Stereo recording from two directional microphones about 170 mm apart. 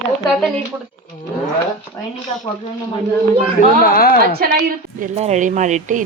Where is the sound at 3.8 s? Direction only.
60° left (ahead or behind).